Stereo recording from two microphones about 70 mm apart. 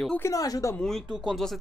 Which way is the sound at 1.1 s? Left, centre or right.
Centre.